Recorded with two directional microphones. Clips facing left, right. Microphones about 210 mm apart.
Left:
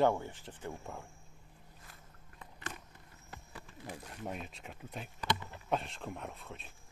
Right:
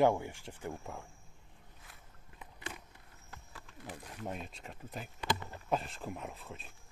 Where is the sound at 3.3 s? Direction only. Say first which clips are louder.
Left 3 dB; 10° left (ahead or behind).